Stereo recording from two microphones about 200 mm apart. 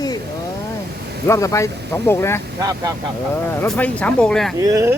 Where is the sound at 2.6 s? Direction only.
20° right (ahead or behind).